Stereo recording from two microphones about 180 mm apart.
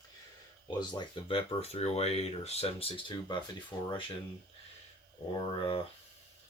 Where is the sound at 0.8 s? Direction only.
25° left (ahead or behind).